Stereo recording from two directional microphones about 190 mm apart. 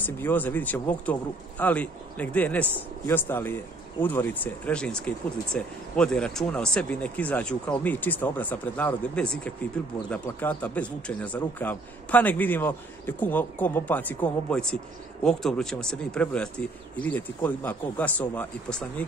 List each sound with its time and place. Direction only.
0.0 s speech: 10° left (ahead or behind)